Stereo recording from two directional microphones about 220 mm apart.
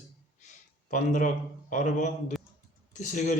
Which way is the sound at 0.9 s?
35° left (ahead or behind).